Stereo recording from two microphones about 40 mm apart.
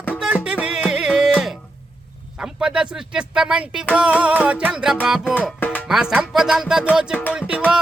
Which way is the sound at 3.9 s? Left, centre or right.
Right.